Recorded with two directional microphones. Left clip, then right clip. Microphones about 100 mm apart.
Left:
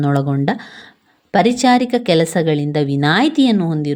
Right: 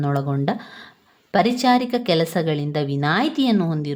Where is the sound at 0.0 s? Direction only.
45° left (ahead or behind).